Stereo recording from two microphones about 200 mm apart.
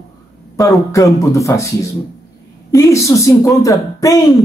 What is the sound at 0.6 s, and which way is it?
A woman's voice, 15° left (ahead or behind).